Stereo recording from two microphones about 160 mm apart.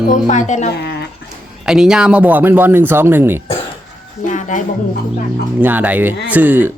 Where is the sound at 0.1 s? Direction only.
50° left (ahead or behind).